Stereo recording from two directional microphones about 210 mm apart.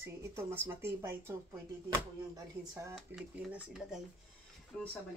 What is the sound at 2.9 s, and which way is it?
Speech, centre (ahead or behind).